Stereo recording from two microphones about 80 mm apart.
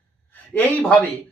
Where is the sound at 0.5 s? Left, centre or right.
Centre.